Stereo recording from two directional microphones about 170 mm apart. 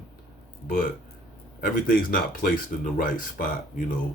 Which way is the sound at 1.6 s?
55° left (ahead or behind).